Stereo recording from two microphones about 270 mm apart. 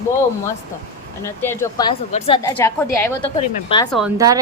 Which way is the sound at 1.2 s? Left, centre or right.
Centre.